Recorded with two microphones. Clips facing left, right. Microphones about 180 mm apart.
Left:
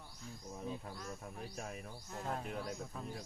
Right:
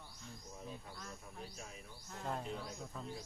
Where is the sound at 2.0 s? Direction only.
5° left (ahead or behind).